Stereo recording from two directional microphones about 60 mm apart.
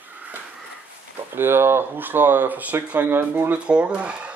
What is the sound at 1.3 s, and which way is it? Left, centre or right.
Speech, right.